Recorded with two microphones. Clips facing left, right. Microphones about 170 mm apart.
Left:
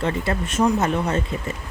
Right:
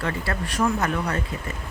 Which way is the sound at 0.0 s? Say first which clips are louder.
Left 4 dB; 25° left (ahead or behind).